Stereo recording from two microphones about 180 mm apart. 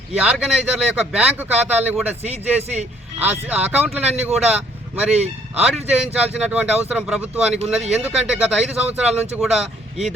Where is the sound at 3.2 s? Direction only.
10° right (ahead or behind).